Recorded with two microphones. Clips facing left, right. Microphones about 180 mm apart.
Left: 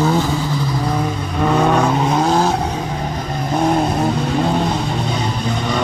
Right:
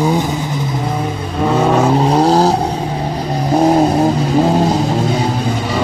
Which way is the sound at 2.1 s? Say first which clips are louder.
Right 5 dB; 35° right (ahead or behind).